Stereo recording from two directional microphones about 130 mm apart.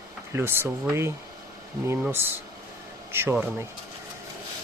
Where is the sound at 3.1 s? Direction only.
20° right (ahead or behind).